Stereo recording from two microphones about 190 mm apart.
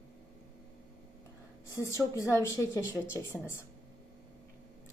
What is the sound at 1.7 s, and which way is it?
A woman's voice, 15° left (ahead or behind).